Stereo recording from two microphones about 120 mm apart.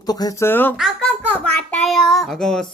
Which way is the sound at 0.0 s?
30° left (ahead or behind).